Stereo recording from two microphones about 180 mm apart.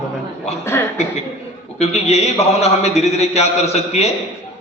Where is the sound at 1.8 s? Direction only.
35° left (ahead or behind).